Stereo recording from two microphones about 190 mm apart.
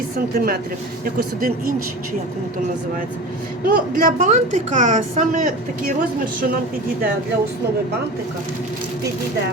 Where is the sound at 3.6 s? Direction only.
50° right (ahead or behind).